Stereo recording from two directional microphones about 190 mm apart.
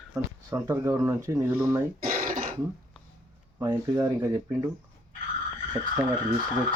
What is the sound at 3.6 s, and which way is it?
Speech, 15° right (ahead or behind).